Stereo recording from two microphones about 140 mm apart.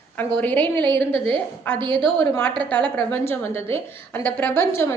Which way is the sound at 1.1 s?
40° right (ahead or behind).